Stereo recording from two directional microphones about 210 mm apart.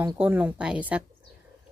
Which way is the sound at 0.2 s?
10° right (ahead or behind).